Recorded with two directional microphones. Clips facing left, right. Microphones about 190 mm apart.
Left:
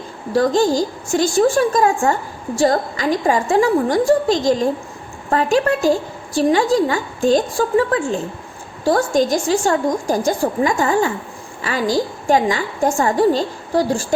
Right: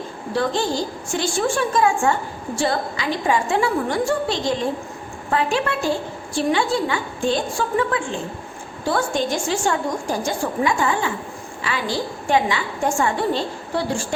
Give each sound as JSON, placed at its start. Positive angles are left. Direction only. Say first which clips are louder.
{"t": 0.3, "sound": "a woman's voice", "louder": "left 7 dB", "side_deg": 40}